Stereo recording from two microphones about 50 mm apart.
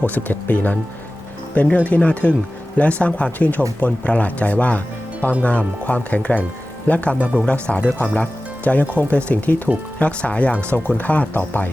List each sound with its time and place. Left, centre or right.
0.0 s speech: left
7.2 s speech: right
7.4 s speech: left